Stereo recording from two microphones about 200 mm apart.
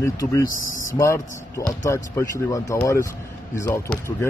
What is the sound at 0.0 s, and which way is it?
Speech, 15° left (ahead or behind).